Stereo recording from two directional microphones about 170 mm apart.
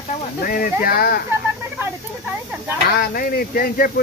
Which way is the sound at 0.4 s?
60° left (ahead or behind).